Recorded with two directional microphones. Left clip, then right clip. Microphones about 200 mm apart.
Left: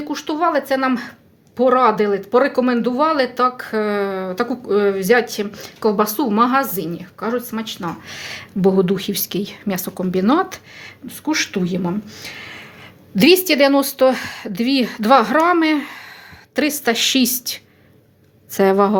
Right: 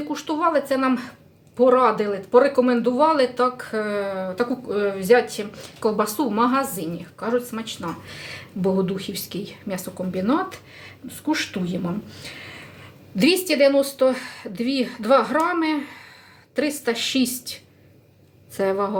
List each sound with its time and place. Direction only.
0.1 s a woman's voice: 40° left (ahead or behind)